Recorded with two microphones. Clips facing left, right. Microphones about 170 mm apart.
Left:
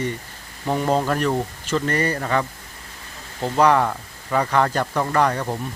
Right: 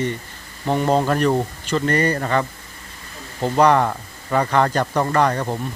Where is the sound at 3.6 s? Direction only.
Centre (ahead or behind).